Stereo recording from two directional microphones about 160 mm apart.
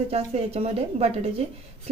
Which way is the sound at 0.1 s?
40° right (ahead or behind).